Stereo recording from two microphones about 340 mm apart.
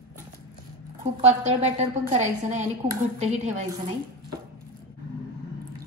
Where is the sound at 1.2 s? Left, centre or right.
Centre.